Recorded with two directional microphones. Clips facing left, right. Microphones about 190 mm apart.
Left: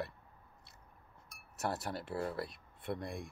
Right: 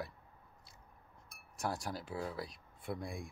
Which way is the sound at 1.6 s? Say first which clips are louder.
Left 1 dB; 5° left (ahead or behind).